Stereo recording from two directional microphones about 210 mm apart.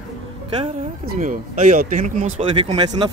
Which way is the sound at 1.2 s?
35° right (ahead or behind).